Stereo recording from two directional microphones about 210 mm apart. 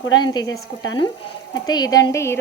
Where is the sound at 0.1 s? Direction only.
20° left (ahead or behind).